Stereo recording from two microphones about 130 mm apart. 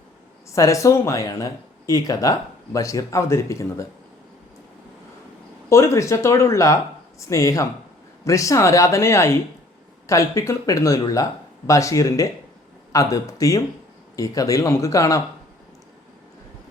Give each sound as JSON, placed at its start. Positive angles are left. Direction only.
{"t": 0.5, "sound": "speech", "side_deg": 25}
{"t": 5.6, "sound": "speech", "side_deg": 20}